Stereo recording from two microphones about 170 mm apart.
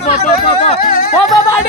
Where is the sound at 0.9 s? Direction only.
55° left (ahead or behind).